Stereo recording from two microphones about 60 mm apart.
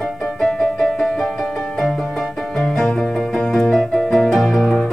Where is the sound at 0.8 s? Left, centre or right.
Centre.